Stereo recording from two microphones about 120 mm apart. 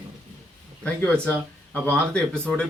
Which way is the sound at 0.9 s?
10° left (ahead or behind).